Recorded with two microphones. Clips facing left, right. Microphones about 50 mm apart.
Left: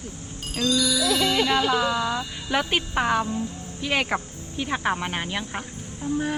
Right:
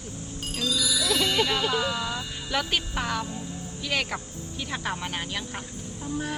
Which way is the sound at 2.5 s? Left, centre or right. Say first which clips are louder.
Left 4 dB; centre.